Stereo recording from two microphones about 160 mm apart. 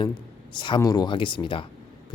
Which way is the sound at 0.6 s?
25° left (ahead or behind).